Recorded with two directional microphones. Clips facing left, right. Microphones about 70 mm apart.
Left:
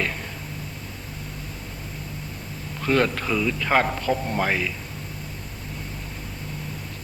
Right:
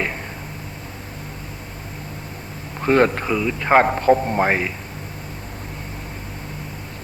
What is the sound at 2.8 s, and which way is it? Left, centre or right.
A man's voice, right.